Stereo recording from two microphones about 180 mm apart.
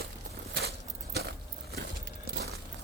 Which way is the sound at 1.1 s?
60° right (ahead or behind).